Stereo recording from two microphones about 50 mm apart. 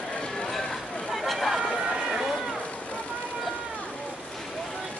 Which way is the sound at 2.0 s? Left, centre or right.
Centre.